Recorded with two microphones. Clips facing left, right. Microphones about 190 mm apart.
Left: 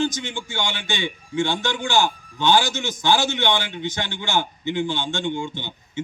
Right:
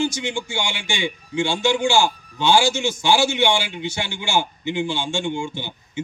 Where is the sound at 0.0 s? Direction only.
15° right (ahead or behind).